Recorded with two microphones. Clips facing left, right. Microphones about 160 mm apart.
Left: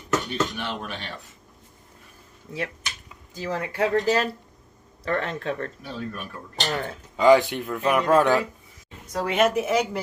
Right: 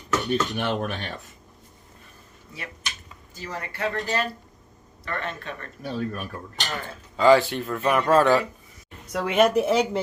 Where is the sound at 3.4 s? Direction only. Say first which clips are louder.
Left 5 dB; 90° left.